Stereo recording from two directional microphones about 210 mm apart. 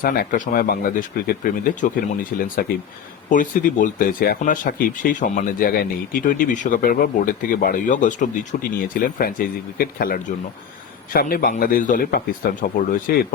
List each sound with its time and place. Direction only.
0.0 s speech: 40° left (ahead or behind)